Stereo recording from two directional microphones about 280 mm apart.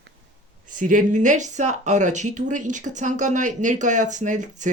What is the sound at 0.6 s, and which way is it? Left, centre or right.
Speech, right.